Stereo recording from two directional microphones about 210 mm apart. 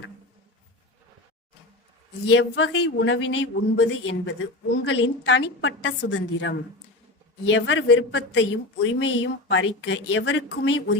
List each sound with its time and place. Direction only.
2.3 s speech: 60° left (ahead or behind)